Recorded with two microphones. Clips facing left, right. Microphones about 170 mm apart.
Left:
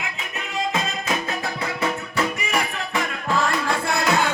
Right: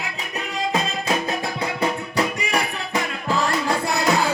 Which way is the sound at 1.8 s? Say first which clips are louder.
Right 2 dB; 35° right (ahead or behind).